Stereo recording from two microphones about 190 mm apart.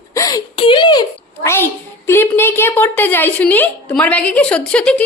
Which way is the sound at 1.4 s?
10° left (ahead or behind).